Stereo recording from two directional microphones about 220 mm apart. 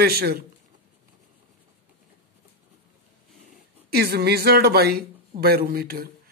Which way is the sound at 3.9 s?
45° right (ahead or behind).